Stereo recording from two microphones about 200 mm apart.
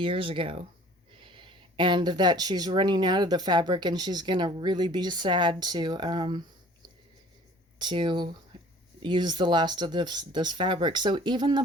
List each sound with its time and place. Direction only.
0.0 s speech: 25° right (ahead or behind)
7.8 s speech: 25° right (ahead or behind)